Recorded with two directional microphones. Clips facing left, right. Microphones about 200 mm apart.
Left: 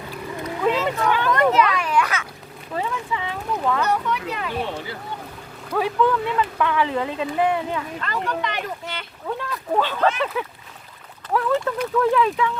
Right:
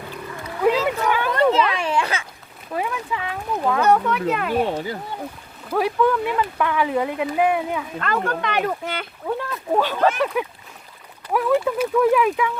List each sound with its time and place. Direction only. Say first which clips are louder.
0.4 s boat: right 3 dB; 10° right (ahead or behind)
1.3 s a sound: even; 30° right (ahead or behind)
2.7 s speech: right 1 dB; 5° right (ahead or behind)
3.8 s speech: right 6 dB; 50° right (ahead or behind)
5.7 s speech: right 1 dB; 10° right (ahead or behind)
7.9 s speech: right 3 dB; 55° right (ahead or behind)
9.2 s speech: right 2 dB; 10° right (ahead or behind)
11.3 s speech: right 3 dB; 10° right (ahead or behind)